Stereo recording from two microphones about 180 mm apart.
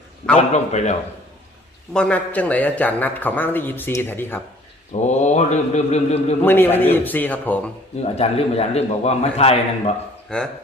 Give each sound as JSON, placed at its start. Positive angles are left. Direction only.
{"t": 0.3, "sound": "a man's voice", "side_deg": 40}
{"t": 1.9, "sound": "a man's voice", "side_deg": 5}
{"t": 5.0, "sound": "a man's voice", "side_deg": 40}
{"t": 6.4, "sound": "a man's voice", "side_deg": 10}
{"t": 8.0, "sound": "a man's voice", "side_deg": 35}
{"t": 10.2, "sound": "speech", "side_deg": 5}